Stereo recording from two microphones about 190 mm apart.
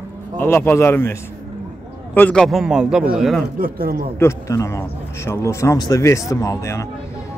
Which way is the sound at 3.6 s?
50° right (ahead or behind).